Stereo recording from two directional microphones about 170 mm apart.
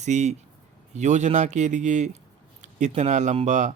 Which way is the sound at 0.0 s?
45° right (ahead or behind).